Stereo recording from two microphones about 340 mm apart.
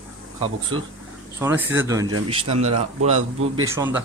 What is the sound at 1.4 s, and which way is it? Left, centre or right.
Speech, centre.